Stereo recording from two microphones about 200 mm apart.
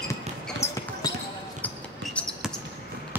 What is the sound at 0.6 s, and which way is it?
Basketball bounce, 15° left (ahead or behind).